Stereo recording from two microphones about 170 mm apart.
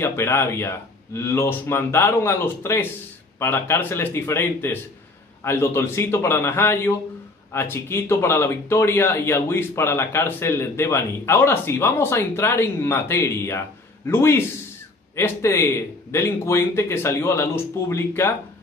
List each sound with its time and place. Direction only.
0.0 s speech: 15° left (ahead or behind)